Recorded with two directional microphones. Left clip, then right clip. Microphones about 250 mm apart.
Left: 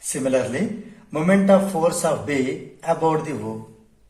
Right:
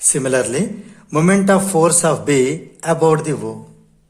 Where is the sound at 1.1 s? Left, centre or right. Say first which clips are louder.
Right 2 dB; right.